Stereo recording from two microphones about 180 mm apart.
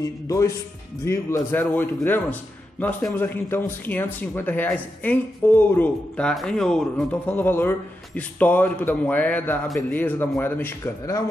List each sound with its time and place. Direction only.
0.0 s a man's voice: 20° left (ahead or behind)